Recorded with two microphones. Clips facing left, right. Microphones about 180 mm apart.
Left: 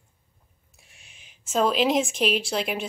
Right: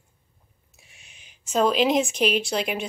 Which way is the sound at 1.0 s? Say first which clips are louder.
Even; centre (ahead or behind).